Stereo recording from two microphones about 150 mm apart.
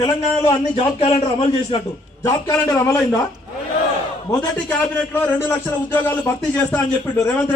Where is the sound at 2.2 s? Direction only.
20° left (ahead or behind).